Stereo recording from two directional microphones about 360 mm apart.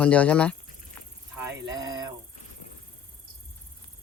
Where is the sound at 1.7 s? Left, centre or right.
Centre.